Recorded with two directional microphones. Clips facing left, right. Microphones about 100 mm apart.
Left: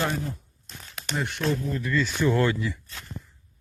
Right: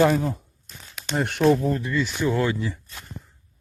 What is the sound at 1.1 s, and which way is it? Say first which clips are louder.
Speech: right 5 dB; 60° right (ahead or behind).